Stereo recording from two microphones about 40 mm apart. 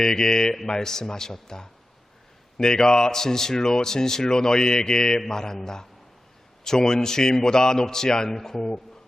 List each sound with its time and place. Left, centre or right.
0.0 s speech: centre